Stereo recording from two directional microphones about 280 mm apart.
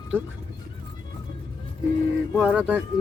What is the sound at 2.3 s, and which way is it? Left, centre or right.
Speech, centre.